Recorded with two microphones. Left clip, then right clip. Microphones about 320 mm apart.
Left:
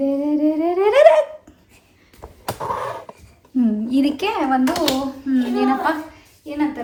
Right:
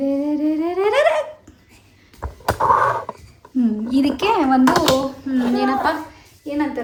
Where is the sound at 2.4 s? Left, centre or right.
Right.